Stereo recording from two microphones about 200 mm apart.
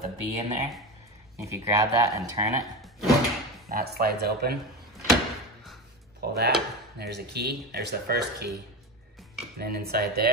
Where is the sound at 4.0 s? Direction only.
50° right (ahead or behind).